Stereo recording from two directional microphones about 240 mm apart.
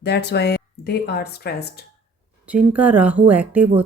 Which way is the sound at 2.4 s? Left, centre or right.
Centre.